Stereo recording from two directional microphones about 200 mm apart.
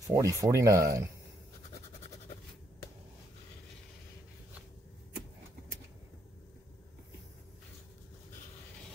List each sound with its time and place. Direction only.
0.0 s speech: 15° right (ahead or behind)